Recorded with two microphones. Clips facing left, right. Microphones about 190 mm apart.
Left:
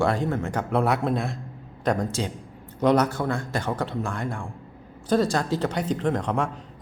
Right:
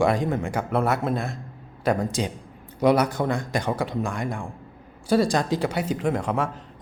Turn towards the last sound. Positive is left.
turn(degrees=-5)  # may be behind; listen again after turning